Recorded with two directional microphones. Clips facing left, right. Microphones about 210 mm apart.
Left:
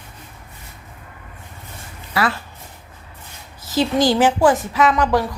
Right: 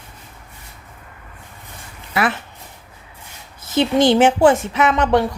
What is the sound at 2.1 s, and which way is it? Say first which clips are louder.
Speech: right 1 dB; 20° right (ahead or behind).